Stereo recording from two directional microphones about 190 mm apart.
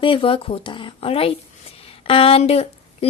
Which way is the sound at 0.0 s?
30° left (ahead or behind).